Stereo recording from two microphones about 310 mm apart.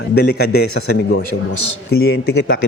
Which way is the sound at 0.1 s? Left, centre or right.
Left.